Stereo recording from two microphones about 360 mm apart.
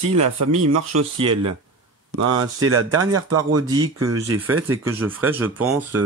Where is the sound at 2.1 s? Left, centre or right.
Right.